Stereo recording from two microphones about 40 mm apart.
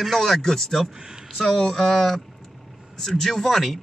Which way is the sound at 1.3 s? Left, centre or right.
Centre.